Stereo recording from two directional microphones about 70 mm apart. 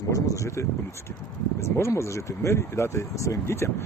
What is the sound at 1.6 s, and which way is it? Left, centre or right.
Speech, left.